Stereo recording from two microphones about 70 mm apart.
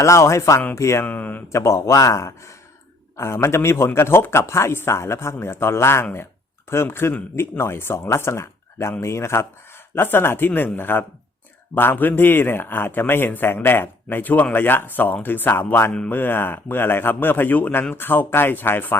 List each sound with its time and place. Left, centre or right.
0.0 s speech: left
1.0 s speech: left
1.5 s speech: left